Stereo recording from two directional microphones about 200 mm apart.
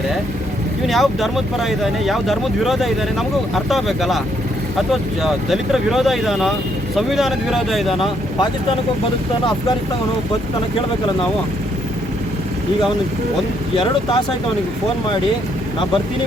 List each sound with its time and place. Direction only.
0.9 s speech: centre (ahead or behind)
7.9 s speech: 25° left (ahead or behind)